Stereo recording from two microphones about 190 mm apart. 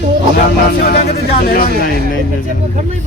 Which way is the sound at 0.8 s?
55° left (ahead or behind).